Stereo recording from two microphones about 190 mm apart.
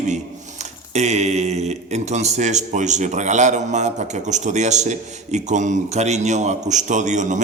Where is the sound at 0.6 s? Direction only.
35° right (ahead or behind).